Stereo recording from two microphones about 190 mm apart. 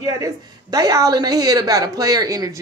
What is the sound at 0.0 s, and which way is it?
A woman's voice, 20° right (ahead or behind).